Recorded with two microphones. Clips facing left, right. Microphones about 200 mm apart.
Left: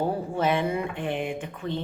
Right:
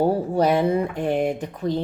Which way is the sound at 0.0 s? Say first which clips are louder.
Right 6 dB; 40° right (ahead or behind).